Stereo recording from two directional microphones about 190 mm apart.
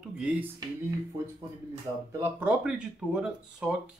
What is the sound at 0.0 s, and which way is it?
Music, 5° right (ahead or behind).